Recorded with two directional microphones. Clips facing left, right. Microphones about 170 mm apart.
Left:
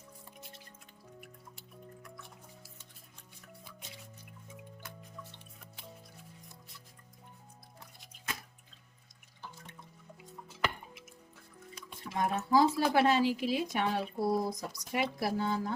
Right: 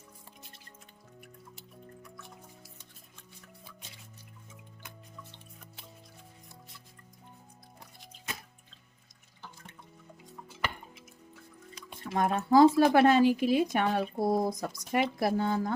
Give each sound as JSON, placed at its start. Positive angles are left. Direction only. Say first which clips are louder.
{"t": 12.1, "sound": "speech", "louder": "right 5 dB", "side_deg": -55}